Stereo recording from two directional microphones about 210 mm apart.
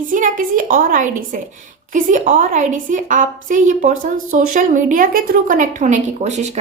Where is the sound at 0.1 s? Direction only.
40° right (ahead or behind).